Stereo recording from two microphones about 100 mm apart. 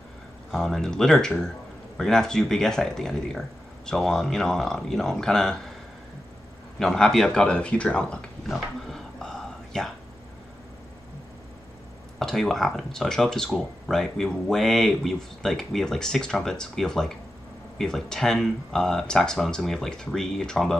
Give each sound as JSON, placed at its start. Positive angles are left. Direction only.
{"t": 0.5, "sound": "speech", "side_deg": 5}
{"t": 6.8, "sound": "speech", "side_deg": 5}
{"t": 8.8, "sound": "a sound", "side_deg": 5}
{"t": 12.2, "sound": "speech", "side_deg": 5}